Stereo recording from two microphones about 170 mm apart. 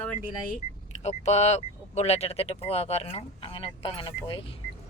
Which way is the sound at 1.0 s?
40° left (ahead or behind).